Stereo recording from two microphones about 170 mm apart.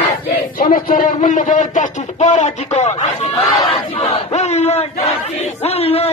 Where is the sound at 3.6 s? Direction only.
35° left (ahead or behind).